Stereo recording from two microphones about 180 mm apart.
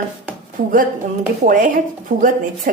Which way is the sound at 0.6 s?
50° right (ahead or behind).